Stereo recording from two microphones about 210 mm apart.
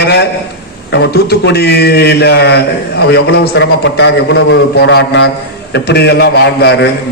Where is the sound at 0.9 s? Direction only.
50° left (ahead or behind).